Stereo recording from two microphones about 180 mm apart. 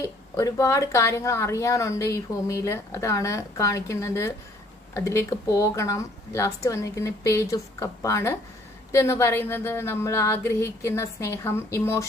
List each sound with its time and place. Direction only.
0.0 s speech: 20° left (ahead or behind)